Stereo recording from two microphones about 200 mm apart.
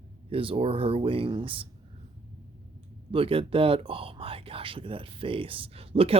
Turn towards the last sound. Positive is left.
turn(degrees=-30)  # may be behind; listen again after turning